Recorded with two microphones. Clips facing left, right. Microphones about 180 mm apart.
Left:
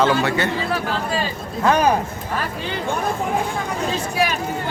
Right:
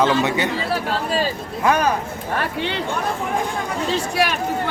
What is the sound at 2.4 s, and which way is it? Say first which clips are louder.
Speech: right 4 dB; 70° right (ahead or behind).